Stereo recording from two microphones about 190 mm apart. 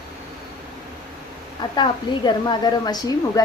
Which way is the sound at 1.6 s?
25° left (ahead or behind).